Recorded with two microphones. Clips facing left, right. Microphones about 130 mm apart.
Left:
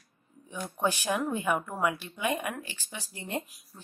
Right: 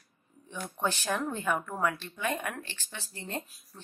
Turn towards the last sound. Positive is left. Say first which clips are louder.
# left 3 dB
turn(degrees=15)  # may be behind; listen again after turning